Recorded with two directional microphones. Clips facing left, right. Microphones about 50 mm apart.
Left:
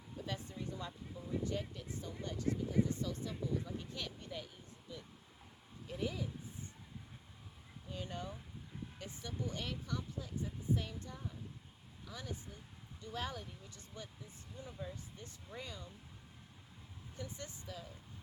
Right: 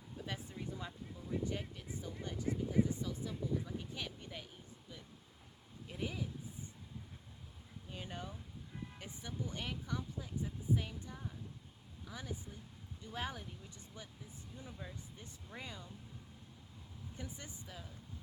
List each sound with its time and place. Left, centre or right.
0.3 s speech: centre
5.9 s speech: centre
7.9 s speech: centre
17.2 s speech: centre